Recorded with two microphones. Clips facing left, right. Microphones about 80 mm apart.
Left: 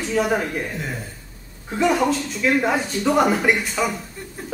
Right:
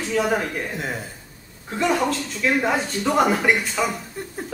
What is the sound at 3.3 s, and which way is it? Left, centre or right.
Speech, centre.